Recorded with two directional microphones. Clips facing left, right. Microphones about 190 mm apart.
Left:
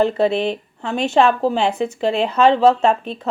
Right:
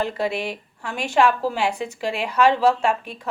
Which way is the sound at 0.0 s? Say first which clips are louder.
Left 8 dB; 25° left (ahead or behind).